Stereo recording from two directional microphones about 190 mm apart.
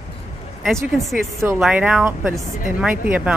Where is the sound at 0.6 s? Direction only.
Centre (ahead or behind).